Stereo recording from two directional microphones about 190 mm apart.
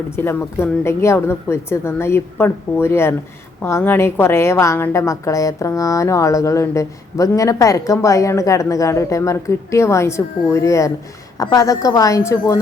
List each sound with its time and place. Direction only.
0.2 s a woman's voice: 10° left (ahead or behind)